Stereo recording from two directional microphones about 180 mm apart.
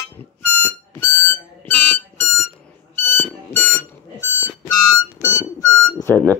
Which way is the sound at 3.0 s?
10° left (ahead or behind).